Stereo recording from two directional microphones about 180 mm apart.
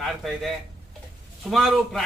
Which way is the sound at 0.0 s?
Centre (ahead or behind).